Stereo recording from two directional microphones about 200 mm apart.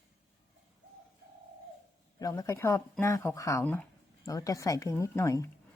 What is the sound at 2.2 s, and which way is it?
A woman's voice, 15° left (ahead or behind).